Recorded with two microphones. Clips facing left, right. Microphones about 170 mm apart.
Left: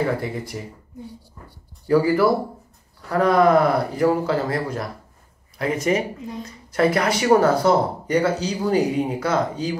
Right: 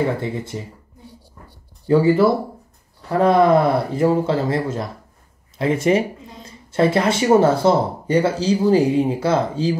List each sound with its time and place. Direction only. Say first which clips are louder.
0.2 s speech: right 2 dB; 25° right (ahead or behind)
1.9 s speech: right 2 dB; 25° right (ahead or behind)